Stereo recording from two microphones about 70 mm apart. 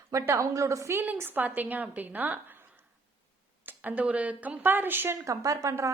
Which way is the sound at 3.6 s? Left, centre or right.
Right.